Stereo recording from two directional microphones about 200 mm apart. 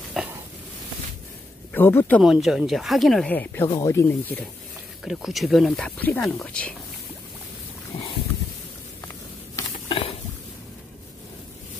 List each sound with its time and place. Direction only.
0.2 s speech: centre (ahead or behind)
1.7 s speech: 10° left (ahead or behind)
5.0 s speech: centre (ahead or behind)
9.6 s a sound: 25° left (ahead or behind)